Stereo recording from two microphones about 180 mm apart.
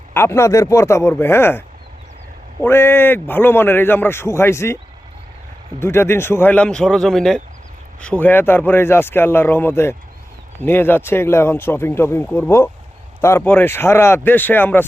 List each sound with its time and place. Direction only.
0.1 s a man's voice: 15° left (ahead or behind)
5.8 s a man's voice: 15° left (ahead or behind)